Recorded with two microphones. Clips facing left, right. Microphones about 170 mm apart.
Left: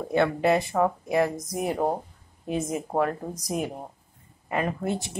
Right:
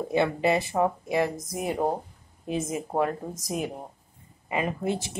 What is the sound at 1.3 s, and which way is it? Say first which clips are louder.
Speech: left 2 dB; 25° right (ahead or behind).